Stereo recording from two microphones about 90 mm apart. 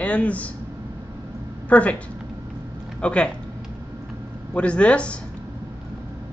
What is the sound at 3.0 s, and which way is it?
Speech, 10° left (ahead or behind).